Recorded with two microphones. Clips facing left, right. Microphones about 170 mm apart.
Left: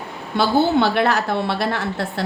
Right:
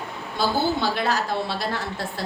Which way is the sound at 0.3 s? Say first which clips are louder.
Left 7 dB; 65° left (ahead or behind).